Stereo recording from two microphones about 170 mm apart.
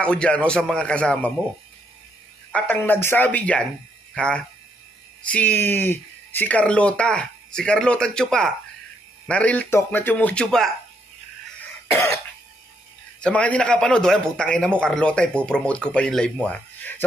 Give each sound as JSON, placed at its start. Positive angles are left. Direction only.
{"t": 0.0, "sound": "speech", "side_deg": 5}
{"t": 2.5, "sound": "speech", "side_deg": 10}
{"t": 13.2, "sound": "a man's voice", "side_deg": 10}